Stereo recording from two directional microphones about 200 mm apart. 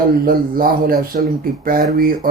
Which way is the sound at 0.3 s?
45° right (ahead or behind).